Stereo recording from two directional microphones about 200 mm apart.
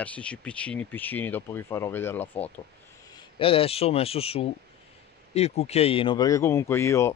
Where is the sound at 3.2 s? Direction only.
25° left (ahead or behind).